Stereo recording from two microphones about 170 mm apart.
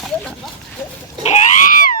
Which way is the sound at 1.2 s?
40° left (ahead or behind).